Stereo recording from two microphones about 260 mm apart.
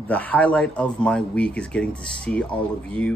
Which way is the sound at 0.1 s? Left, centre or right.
Centre.